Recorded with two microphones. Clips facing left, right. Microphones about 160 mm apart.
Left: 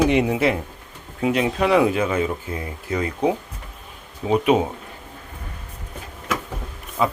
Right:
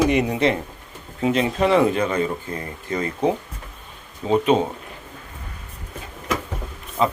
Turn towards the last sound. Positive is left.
turn(degrees=5)  # may be behind; listen again after turning